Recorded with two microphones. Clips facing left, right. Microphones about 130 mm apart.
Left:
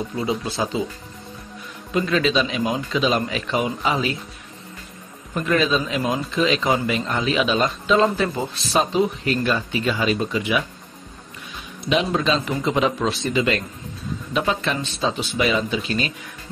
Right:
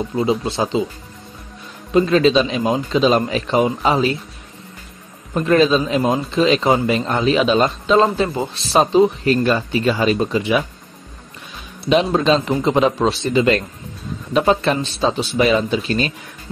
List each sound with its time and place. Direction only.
0.1 s speech: 25° right (ahead or behind)
2.0 s a man's voice: 30° right (ahead or behind)
5.3 s a man's voice: 35° right (ahead or behind)
11.8 s a man's voice: 35° right (ahead or behind)